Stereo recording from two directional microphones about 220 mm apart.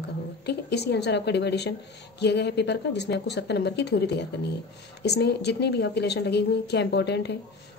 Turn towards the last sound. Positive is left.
turn(degrees=50)  # may be behind; listen again after turning